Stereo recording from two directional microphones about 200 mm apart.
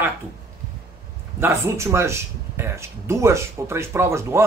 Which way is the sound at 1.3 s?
15° right (ahead or behind).